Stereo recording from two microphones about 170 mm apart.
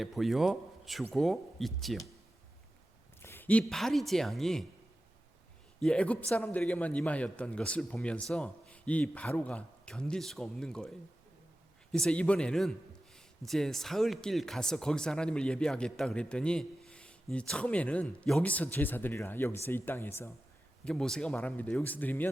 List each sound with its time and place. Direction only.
0.0 s speech: centre (ahead or behind)
3.2 s speech: 15° left (ahead or behind)
5.8 s a man's voice: 5° left (ahead or behind)
20.8 s a man's voice: 5° left (ahead or behind)